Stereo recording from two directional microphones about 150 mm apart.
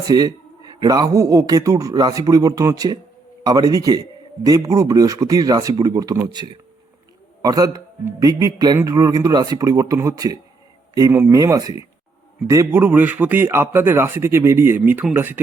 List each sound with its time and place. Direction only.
0.1 s a man's voice: 25° right (ahead or behind)